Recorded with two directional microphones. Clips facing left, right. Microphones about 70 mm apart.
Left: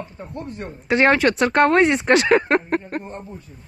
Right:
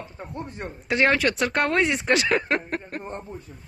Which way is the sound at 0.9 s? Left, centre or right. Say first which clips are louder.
Left 5 dB; left.